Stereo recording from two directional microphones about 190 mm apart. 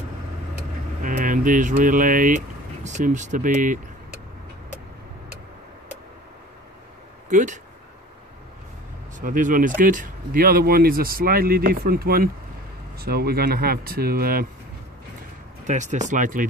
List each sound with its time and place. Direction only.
1.0 s speech: 45° right (ahead or behind)
7.2 s speech: 40° right (ahead or behind)
9.2 s speech: 45° right (ahead or behind)
15.6 s speech: 40° right (ahead or behind)